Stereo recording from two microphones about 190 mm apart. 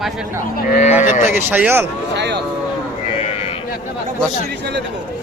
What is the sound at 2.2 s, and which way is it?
Speech, 60° right (ahead or behind).